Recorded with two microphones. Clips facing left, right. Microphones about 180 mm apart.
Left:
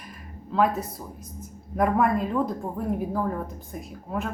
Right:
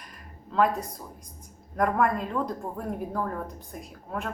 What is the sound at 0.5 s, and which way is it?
Speech, 5° left (ahead or behind).